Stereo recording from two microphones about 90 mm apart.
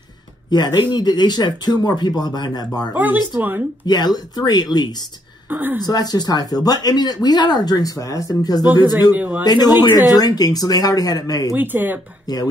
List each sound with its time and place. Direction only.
0.5 s speech: 50° left (ahead or behind)
2.9 s speech: 20° right (ahead or behind)
3.8 s speech: 50° left (ahead or behind)
5.5 s speech: 20° right (ahead or behind)
5.9 s speech: 45° left (ahead or behind)
9.1 s speech: 20° right (ahead or behind)
9.4 s speech: 50° left (ahead or behind)
11.5 s speech: 20° right (ahead or behind)
12.3 s speech: 45° left (ahead or behind)